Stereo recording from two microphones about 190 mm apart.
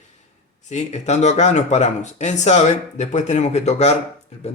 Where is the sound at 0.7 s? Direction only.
35° left (ahead or behind).